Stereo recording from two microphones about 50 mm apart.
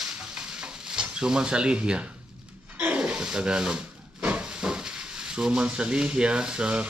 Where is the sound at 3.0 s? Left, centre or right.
Centre.